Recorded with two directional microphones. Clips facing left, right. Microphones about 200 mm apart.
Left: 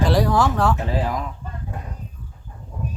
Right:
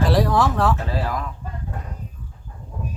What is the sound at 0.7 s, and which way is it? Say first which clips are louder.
Speech: left 2 dB; 15° left (ahead or behind).